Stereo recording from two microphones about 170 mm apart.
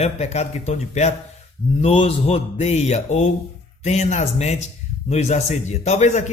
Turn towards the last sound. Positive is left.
turn(degrees=40)  # may be behind; listen again after turning